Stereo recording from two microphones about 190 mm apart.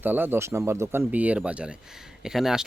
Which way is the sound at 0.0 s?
10° right (ahead or behind).